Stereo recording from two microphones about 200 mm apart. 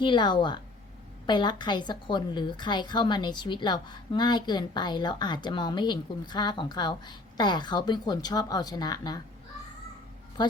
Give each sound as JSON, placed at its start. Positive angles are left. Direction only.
{"t": 0.0, "sound": "a woman's voice", "side_deg": 25}